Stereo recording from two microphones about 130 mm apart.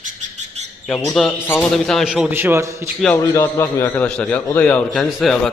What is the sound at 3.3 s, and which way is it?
A man's voice, 20° left (ahead or behind).